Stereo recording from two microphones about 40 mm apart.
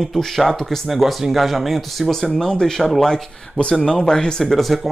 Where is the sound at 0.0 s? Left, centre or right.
Centre.